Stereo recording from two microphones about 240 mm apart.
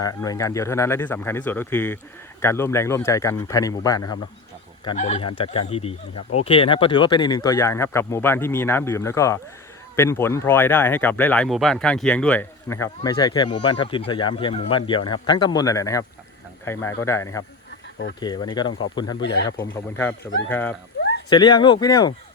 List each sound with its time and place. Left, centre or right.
0.0 s speech: centre
4.9 s speech: left
19.2 s speech: left
19.5 s speech: centre